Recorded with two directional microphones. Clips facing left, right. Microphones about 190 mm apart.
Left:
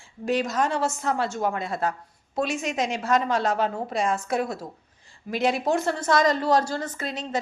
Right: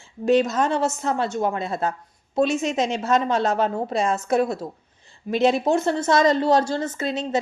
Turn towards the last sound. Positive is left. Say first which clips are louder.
# right 6 dB
turn(degrees=-25)  # may be behind; listen again after turning